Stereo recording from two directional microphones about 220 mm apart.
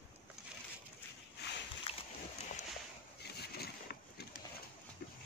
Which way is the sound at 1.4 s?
50° left (ahead or behind).